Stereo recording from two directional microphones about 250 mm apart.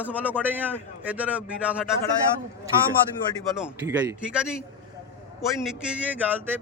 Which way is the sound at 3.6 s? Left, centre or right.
Centre.